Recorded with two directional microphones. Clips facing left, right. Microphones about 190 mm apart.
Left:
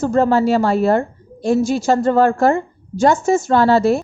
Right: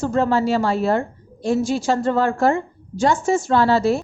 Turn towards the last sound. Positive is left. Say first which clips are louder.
# left 3 dB
turn(degrees=45)  # may be behind; listen again after turning